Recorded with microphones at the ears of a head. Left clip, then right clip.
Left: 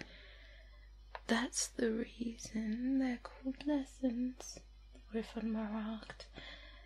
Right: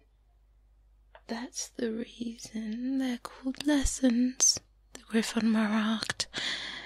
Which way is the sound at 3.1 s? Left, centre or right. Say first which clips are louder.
Right 6 dB; right.